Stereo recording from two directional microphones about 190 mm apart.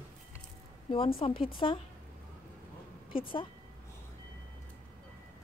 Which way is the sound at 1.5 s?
25° left (ahead or behind).